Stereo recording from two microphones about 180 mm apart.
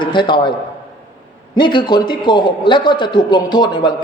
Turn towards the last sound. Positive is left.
turn(degrees=25)  # may be behind; listen again after turning